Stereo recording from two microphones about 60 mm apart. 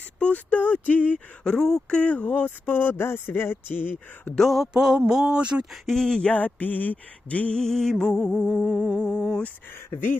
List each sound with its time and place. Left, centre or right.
0.2 s speech: left
1.5 s music: centre
2.0 s speech: left
4.4 s humming: centre
4.7 s speech: centre
5.7 s music: centre
6.3 s speech: left
7.5 s music: centre
8.4 s humming: centre
9.0 s music: centre